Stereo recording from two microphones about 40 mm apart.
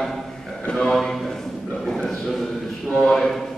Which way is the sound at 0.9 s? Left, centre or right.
Centre.